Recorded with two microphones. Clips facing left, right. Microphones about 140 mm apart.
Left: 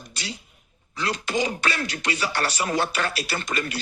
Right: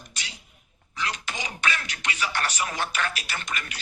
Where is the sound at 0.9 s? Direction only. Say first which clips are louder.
Left 7 dB; 35° left (ahead or behind).